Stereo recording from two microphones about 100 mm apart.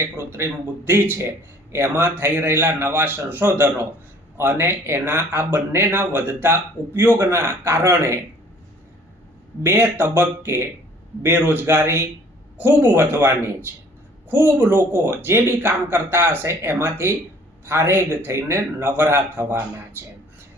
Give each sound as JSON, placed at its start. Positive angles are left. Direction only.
{"t": 0.0, "sound": "speech", "side_deg": -25}
{"t": 9.6, "sound": "speech", "side_deg": -20}